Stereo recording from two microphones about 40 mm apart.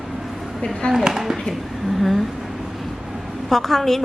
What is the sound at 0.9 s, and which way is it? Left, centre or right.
Speech, centre.